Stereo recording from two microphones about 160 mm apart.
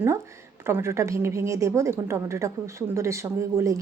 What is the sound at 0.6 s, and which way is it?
A woman's voice, 15° right (ahead or behind).